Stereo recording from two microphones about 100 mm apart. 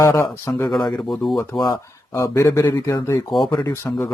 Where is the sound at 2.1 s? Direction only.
30° left (ahead or behind).